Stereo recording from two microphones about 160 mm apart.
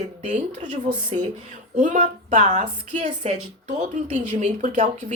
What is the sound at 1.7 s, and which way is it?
Speech, 50° right (ahead or behind).